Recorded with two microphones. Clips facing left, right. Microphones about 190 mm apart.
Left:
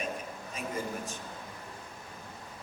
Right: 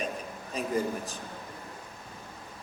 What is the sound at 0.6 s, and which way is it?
Speech, 35° right (ahead or behind).